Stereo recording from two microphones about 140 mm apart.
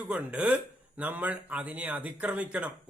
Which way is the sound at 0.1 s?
10° right (ahead or behind).